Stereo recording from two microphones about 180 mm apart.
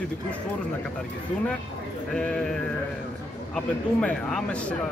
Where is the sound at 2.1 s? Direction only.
5° left (ahead or behind).